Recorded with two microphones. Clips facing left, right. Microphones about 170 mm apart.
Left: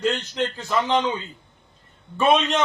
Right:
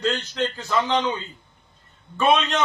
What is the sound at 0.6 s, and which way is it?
Speech, 15° left (ahead or behind).